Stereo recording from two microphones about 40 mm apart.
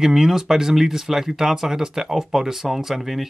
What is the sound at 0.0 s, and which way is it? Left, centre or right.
Speech, centre.